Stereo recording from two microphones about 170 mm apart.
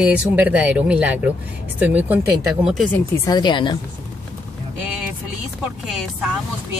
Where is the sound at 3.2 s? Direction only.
25° left (ahead or behind).